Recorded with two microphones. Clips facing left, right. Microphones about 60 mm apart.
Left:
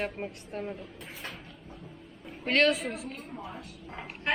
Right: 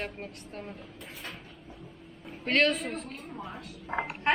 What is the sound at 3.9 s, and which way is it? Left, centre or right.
Speech, right.